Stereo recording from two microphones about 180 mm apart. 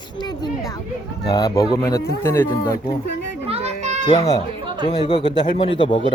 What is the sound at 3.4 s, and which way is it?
Children playing, 35° right (ahead or behind).